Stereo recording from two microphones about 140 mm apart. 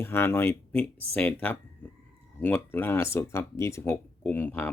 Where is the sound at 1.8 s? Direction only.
10° left (ahead or behind).